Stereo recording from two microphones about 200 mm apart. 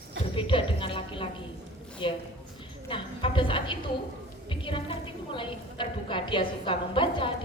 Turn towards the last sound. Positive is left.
turn(degrees=25)  # may be behind; listen again after turning